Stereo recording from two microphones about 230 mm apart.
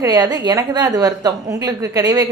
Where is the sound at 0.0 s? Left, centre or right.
Centre.